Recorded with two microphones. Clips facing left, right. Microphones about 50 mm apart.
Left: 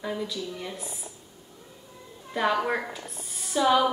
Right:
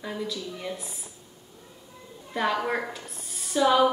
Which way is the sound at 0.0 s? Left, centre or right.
Centre.